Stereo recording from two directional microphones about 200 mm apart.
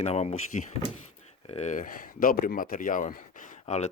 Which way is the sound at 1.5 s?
35° left (ahead or behind).